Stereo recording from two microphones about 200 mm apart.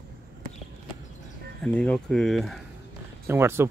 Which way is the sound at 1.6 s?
5° left (ahead or behind).